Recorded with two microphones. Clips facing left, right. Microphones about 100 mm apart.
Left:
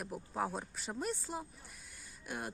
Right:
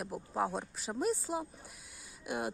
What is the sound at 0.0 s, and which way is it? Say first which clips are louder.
Speech: right 3 dB; centre (ahead or behind).